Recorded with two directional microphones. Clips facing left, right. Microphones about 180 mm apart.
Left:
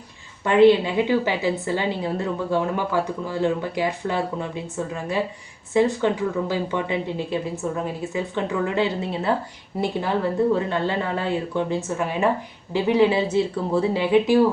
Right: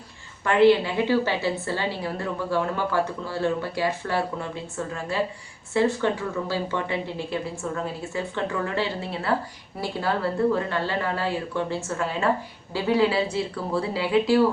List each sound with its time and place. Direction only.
0.4 s a woman's voice: 20° left (ahead or behind)